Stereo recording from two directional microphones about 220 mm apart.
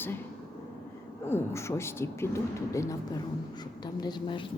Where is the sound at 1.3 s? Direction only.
10° left (ahead or behind).